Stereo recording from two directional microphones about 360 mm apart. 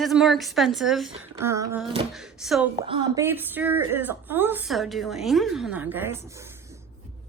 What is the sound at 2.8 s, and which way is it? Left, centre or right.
A woman's voice, centre.